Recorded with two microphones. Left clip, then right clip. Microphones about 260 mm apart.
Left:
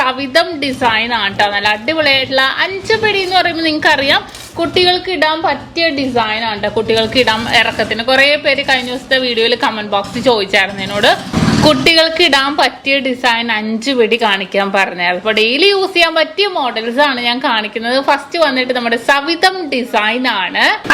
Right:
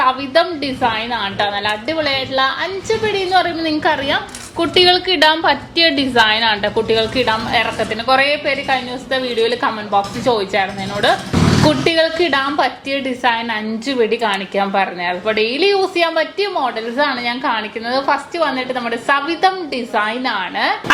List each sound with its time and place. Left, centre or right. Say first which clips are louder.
0.0 s a woman's voice: left 1 dB; left; by 6.7 s centre
6.7 s a woman's voice: left 3 dB; centre